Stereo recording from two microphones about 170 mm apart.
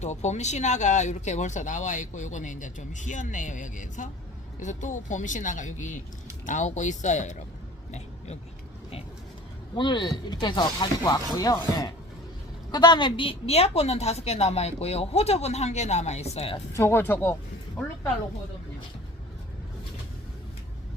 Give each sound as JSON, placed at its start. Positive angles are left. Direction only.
{"t": 0.0, "sound": "speech", "side_deg": 40}
{"t": 7.9, "sound": "a sound", "side_deg": 40}
{"t": 9.7, "sound": "a woman's voice", "side_deg": 25}
{"t": 16.7, "sound": "speech", "side_deg": 15}